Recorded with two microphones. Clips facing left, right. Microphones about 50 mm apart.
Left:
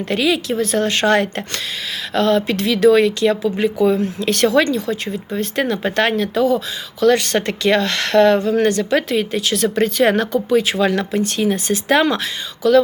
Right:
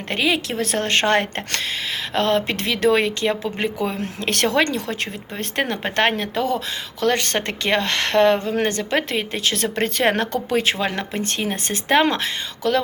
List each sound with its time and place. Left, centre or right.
0.1 s speech: right
0.4 s speech: right
4.6 s speech: right
5.4 s speech: right
10.8 s speech: right
11.2 s speech: right